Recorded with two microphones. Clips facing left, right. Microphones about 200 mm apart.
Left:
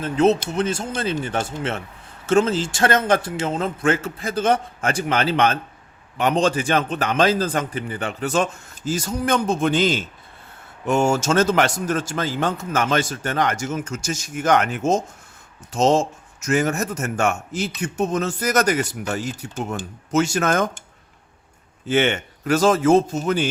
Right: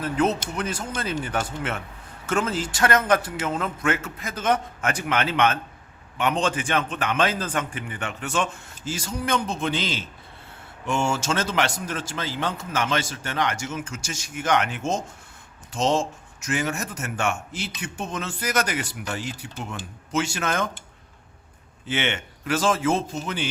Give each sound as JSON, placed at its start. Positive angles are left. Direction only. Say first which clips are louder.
{"t": 0.0, "sound": "a man's voice", "louder": "left 6 dB", "side_deg": 25}
{"t": 21.8, "sound": "a man's voice", "louder": "left 8 dB", "side_deg": 45}